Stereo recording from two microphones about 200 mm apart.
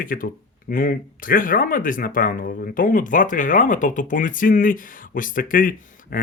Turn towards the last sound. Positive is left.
turn(degrees=45)  # may be behind; listen again after turning